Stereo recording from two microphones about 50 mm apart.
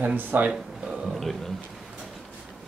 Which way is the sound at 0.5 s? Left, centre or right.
Centre.